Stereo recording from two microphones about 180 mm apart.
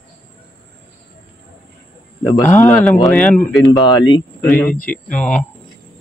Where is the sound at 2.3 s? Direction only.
15° left (ahead or behind).